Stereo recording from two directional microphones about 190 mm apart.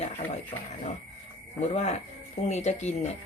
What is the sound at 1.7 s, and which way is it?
Speech, 35° left (ahead or behind).